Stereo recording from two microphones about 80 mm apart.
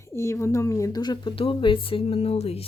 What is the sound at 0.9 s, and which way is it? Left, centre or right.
Speech, left.